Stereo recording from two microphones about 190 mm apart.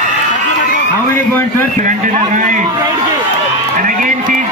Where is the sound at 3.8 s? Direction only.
45° right (ahead or behind).